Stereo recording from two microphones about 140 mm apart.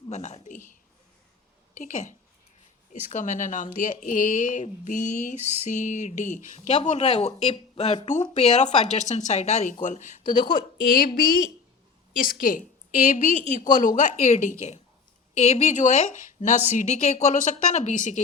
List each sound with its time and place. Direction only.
0.1 s a sound: 55° left (ahead or behind)
1.8 s speech: 65° left (ahead or behind)
10.5 s a woman's voice: 85° left
12.2 s a woman's voice: 75° left (ahead or behind)
13.5 s speech: 60° left (ahead or behind)